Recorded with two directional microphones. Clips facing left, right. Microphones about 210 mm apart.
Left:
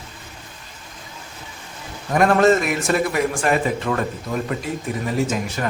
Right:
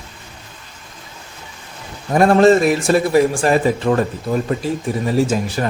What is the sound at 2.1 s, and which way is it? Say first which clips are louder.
A man's voice: right 4 dB; 30° right (ahead or behind).